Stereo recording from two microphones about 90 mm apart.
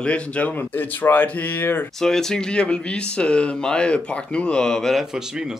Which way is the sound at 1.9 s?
5° left (ahead or behind).